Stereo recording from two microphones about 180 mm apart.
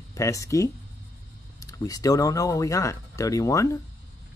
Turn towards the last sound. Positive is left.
turn(degrees=15)  # may be behind; listen again after turning